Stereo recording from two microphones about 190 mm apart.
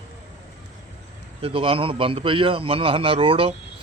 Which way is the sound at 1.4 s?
30° right (ahead or behind).